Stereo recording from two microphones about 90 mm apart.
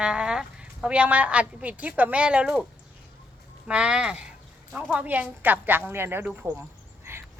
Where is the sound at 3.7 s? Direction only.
10° right (ahead or behind); by 6.6 s 30° right (ahead or behind).